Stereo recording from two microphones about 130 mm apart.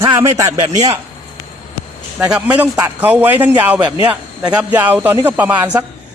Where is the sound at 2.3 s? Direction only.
10° right (ahead or behind).